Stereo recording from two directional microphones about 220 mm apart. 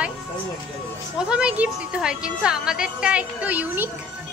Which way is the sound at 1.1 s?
5° right (ahead or behind).